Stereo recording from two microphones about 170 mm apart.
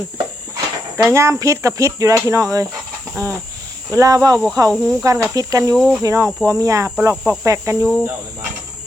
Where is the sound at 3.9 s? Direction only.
20° right (ahead or behind).